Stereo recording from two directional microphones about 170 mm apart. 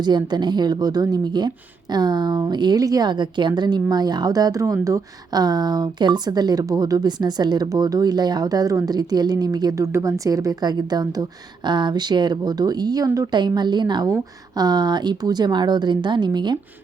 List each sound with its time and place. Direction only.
0.0 s a woman's voice: 25° right (ahead or behind)